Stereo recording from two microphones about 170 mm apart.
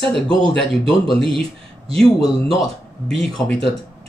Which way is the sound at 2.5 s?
Centre (ahead or behind).